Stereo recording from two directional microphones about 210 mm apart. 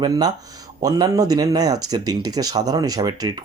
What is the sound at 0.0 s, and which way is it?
Speech, 20° right (ahead or behind).